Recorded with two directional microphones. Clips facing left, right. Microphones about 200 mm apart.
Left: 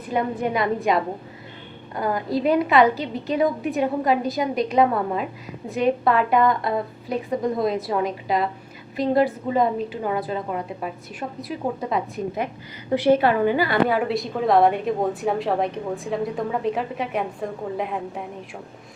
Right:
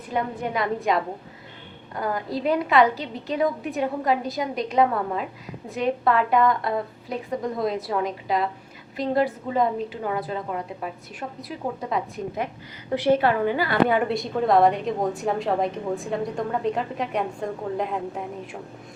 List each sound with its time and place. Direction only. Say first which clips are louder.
0.1 s a woman's voice: left 3 dB; 15° left (ahead or behind)
13.0 s a woman's voice: left 2 dB; 10° left (ahead or behind)